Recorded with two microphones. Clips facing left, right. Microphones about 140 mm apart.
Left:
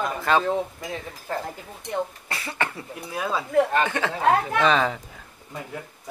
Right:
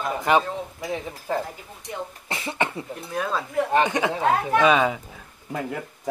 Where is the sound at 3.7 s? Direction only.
20° right (ahead or behind).